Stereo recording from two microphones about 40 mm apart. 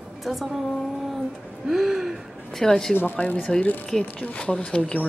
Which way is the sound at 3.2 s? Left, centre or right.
Left.